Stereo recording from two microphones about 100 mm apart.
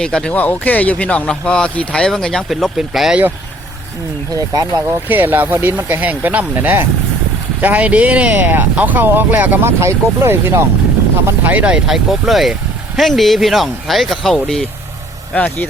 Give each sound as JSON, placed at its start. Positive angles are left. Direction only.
{"t": 0.0, "sound": "speech", "side_deg": 10}
{"t": 4.4, "sound": "speech", "side_deg": -35}
{"t": 5.0, "sound": "speech", "side_deg": -20}